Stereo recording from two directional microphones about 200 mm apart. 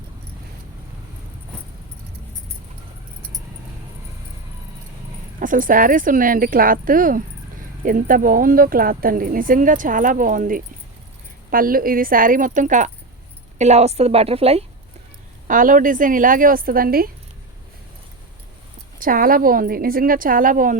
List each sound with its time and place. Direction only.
5.4 s a woman's voice: 40° right (ahead or behind)
15.4 s speech: 45° right (ahead or behind)
18.9 s speech: 45° right (ahead or behind)